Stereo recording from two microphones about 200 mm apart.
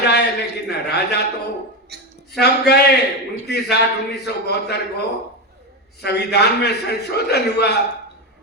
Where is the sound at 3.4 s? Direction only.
55° left (ahead or behind).